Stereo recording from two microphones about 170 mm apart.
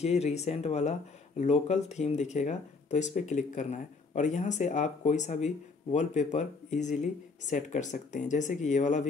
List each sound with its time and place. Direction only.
0.0 s speech: 40° left (ahead or behind)